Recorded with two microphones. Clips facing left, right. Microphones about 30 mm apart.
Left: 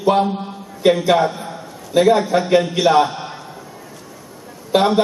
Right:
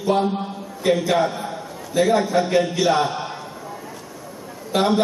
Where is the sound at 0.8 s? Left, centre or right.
Left.